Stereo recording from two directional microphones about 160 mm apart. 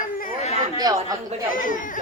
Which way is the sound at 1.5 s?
55° left (ahead or behind).